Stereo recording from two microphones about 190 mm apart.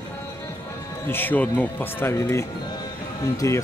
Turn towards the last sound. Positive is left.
turn(degrees=15)  # may be behind; listen again after turning